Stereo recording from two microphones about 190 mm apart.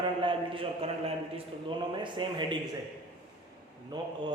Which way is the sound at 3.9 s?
20° right (ahead or behind).